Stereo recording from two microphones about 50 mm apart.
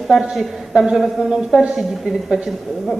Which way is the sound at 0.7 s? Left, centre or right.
Centre.